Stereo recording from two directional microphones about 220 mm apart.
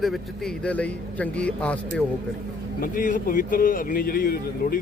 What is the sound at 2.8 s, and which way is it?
A man's voice, 40° left (ahead or behind).